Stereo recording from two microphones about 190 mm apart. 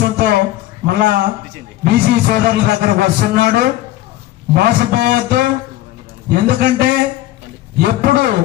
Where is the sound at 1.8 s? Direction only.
55° right (ahead or behind).